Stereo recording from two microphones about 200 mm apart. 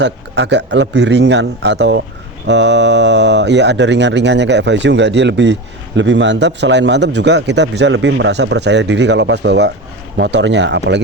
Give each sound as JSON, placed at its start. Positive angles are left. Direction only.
{"t": 0.0, "sound": "a man's voice", "side_deg": -60}